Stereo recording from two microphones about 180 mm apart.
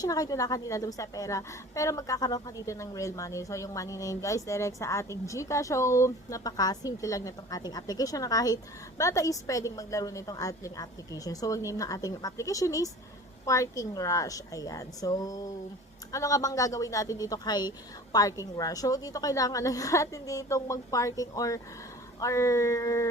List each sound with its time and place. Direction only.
0.0 s a woman's voice: 20° left (ahead or behind)